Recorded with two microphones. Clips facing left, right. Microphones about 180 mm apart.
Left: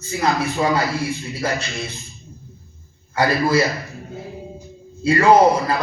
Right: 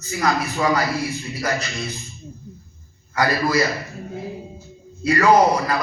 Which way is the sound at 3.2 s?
30° left (ahead or behind).